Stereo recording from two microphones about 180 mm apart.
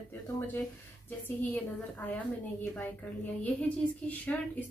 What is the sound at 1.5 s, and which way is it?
A woman's voice, 10° left (ahead or behind).